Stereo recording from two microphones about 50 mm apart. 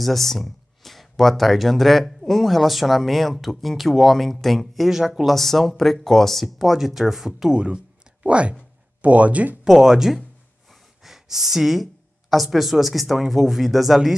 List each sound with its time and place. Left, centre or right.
0.0 s speech: centre
5.3 s speech: centre
7.5 s speech: right
9.7 s speech: centre